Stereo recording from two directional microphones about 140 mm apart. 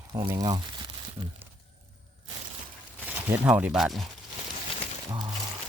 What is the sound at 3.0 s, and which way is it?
Speech, 15° right (ahead or behind).